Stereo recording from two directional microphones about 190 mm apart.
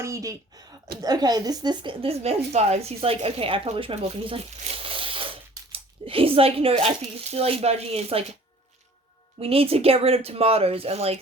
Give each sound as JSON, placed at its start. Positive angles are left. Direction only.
{"t": 0.0, "sound": "speech", "side_deg": -15}
{"t": 9.4, "sound": "speech", "side_deg": -30}